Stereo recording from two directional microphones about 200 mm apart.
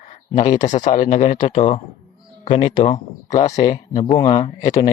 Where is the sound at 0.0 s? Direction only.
35° left (ahead or behind).